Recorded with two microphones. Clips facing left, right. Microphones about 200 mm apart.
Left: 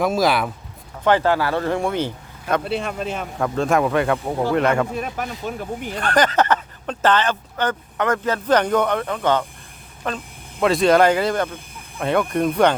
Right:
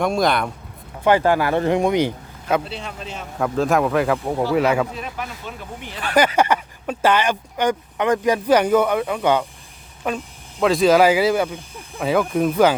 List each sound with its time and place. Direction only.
0.0 s speech: centre (ahead or behind)
1.0 s speech: 15° right (ahead or behind)
2.6 s speech: 55° left (ahead or behind)
3.3 s speech: centre (ahead or behind)
4.9 s speech: 50° left (ahead or behind)
6.0 s speech: 10° right (ahead or behind)